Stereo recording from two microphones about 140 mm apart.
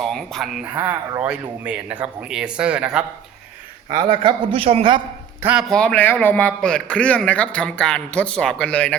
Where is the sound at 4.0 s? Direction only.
35° right (ahead or behind).